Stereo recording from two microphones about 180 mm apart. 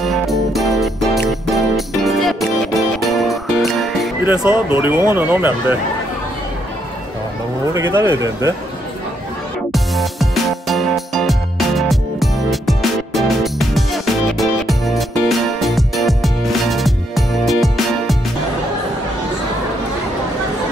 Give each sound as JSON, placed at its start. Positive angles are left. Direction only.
{"t": 0.0, "sound": "music", "side_deg": 0}
{"t": 4.2, "sound": "speech", "side_deg": -10}
{"t": 7.7, "sound": "speech", "side_deg": -15}
{"t": 9.7, "sound": "music", "side_deg": 0}